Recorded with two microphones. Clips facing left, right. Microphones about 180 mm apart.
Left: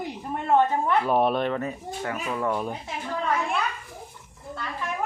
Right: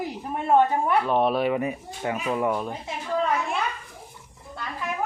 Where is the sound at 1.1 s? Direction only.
Centre (ahead or behind); by 2.5 s 20° right (ahead or behind).